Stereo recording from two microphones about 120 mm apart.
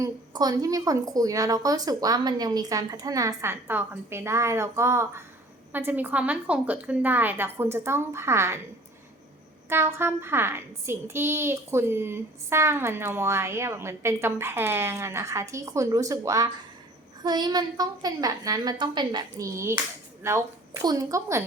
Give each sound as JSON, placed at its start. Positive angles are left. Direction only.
{"t": 0.0, "sound": "a woman's voice", "side_deg": -30}
{"t": 9.6, "sound": "a woman's voice", "side_deg": -20}
{"t": 19.5, "sound": "a woman's voice", "side_deg": -25}